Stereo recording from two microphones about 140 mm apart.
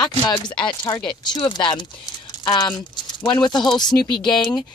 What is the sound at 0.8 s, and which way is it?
Speech, 30° left (ahead or behind).